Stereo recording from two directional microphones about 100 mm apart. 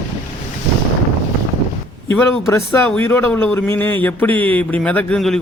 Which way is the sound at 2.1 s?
25° left (ahead or behind).